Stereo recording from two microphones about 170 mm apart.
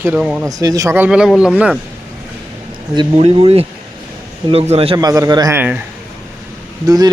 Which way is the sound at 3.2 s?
35° right (ahead or behind).